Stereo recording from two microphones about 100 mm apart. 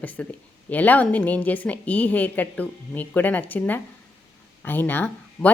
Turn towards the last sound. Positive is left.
turn(degrees=15)  # may be behind; listen again after turning